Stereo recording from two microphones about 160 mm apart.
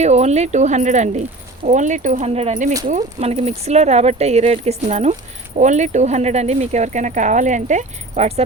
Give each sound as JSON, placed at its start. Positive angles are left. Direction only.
{"t": 0.0, "sound": "speech", "side_deg": -45}